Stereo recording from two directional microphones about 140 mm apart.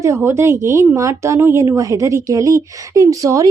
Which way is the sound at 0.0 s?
20° right (ahead or behind).